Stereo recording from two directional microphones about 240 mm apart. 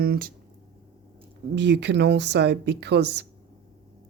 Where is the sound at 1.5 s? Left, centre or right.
Right.